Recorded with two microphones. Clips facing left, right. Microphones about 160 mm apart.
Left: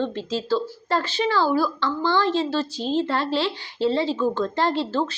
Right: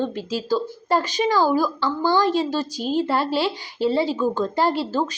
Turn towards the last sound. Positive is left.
turn(degrees=-10)  # may be behind; listen again after turning